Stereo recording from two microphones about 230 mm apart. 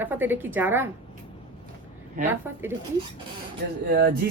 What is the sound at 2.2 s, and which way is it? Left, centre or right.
Speech, centre.